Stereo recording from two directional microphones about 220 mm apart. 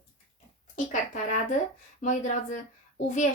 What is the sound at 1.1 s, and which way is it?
Speech, 35° left (ahead or behind).